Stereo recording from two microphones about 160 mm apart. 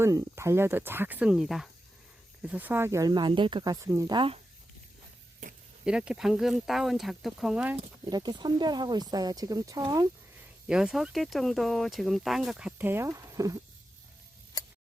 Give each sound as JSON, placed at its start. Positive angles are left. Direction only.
{"t": 0.0, "sound": "speech", "side_deg": -20}
{"t": 5.8, "sound": "speech", "side_deg": -5}
{"t": 8.1, "sound": "speech", "side_deg": -25}
{"t": 10.7, "sound": "speech", "side_deg": -5}